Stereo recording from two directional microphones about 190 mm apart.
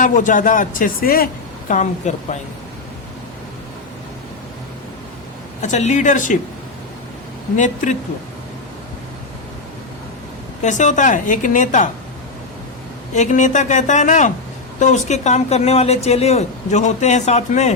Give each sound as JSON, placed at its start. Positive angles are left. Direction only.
{"t": 0.0, "sound": "speech", "side_deg": 40}
{"t": 5.6, "sound": "speech", "side_deg": 40}
{"t": 7.5, "sound": "speech", "side_deg": 40}
{"t": 10.6, "sound": "speech", "side_deg": 40}
{"t": 13.1, "sound": "speech", "side_deg": 40}